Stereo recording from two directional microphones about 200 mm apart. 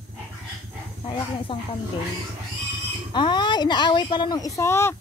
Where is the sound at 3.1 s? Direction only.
20° left (ahead or behind).